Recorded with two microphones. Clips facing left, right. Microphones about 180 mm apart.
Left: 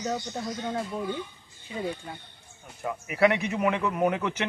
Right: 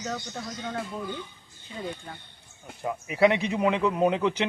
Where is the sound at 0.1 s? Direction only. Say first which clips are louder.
Left 3 dB; 15° left (ahead or behind).